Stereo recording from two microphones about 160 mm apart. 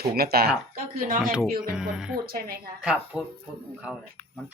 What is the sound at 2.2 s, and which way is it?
Speech, 70° right (ahead or behind).